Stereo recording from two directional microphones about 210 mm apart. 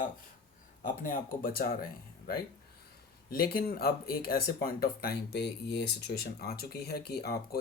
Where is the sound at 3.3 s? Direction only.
45° left (ahead or behind).